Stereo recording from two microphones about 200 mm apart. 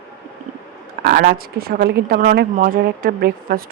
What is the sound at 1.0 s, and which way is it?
A woman's voice, 50° right (ahead or behind).